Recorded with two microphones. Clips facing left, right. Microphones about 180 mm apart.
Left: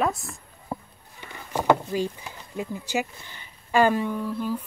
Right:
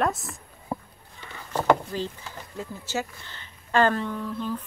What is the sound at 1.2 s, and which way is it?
A woman's voice, 10° left (ahead or behind).